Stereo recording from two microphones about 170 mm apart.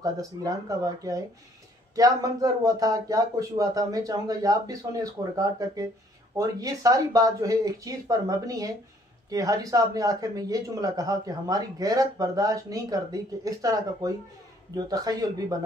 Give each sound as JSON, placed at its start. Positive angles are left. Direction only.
{"t": 0.0, "sound": "a man's voice", "side_deg": -20}